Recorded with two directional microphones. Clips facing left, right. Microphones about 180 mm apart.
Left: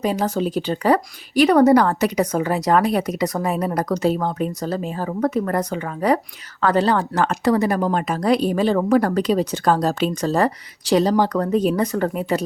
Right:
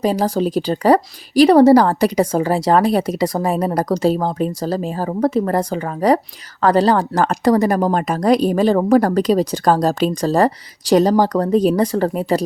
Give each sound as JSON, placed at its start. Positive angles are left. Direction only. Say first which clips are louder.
{"t": 0.0, "sound": "speech", "louder": "right 4 dB", "side_deg": -35}